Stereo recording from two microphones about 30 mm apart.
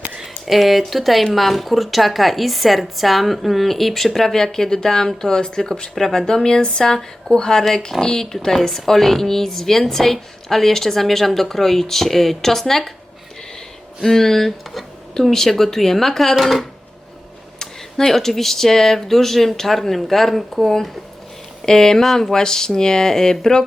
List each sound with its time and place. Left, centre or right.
0.4 s speech: centre
14.0 s speech: centre
17.6 s speech: centre
21.7 s speech: centre
22.0 s speech: centre
22.3 s speech: centre